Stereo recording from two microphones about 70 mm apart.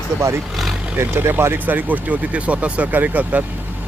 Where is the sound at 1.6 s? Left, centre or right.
Right.